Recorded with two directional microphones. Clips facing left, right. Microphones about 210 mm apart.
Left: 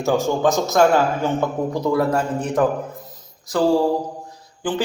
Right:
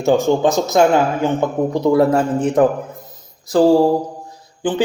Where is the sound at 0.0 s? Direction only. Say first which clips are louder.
Right 4 dB; 25° right (ahead or behind).